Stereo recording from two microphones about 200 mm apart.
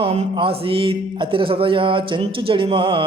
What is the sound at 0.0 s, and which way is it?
Speech, 30° right (ahead or behind).